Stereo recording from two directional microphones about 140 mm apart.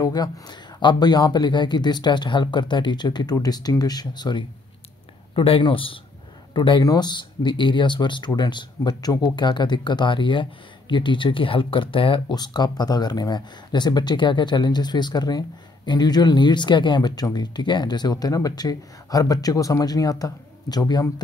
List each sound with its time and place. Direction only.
0.0 s speech: 30° left (ahead or behind)